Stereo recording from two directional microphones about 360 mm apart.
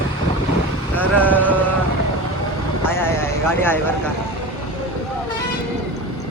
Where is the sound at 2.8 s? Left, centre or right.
Centre.